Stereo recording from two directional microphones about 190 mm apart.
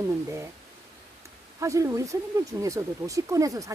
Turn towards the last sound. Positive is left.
turn(degrees=-15)  # may be behind; listen again after turning